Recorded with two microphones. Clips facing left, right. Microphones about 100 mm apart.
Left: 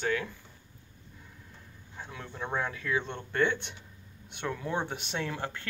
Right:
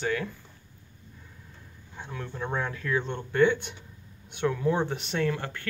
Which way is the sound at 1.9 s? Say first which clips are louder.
Right 4 dB; centre (ahead or behind).